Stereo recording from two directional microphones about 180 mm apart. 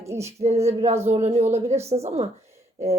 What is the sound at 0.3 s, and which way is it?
Speech, 35° right (ahead or behind).